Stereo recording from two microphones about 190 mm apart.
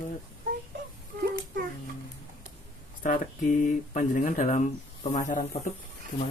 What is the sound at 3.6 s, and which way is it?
Speech, 45° left (ahead or behind).